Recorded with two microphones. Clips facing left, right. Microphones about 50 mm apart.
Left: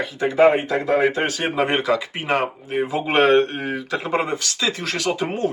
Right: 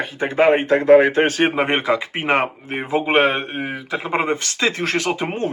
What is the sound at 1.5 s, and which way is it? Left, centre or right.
Speech, right.